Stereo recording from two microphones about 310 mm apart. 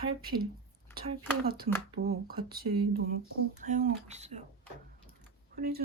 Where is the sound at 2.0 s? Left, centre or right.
Right.